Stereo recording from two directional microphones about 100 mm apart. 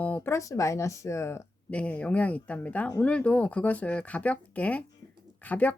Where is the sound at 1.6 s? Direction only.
15° left (ahead or behind).